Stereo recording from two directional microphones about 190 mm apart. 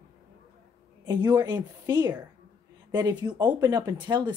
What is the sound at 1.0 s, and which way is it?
A woman's voice, 20° right (ahead or behind).